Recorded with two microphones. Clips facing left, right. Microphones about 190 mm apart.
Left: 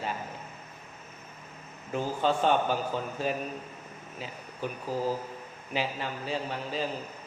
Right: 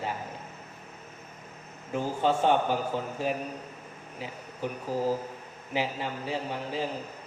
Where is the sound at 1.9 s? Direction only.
20° right (ahead or behind).